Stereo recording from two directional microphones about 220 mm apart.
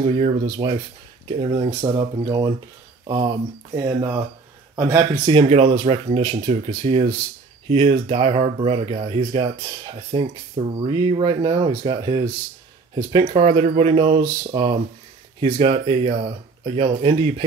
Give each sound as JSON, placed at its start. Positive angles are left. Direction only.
{"t": 0.0, "sound": "speech", "side_deg": -25}